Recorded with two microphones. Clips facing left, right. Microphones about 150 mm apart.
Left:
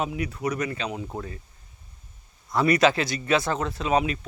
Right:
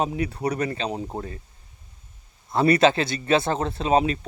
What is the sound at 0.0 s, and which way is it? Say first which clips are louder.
Speech: right 3 dB; 30° right (ahead or behind).